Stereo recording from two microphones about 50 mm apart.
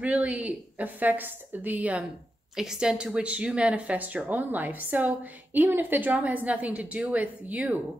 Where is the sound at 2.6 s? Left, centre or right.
Centre.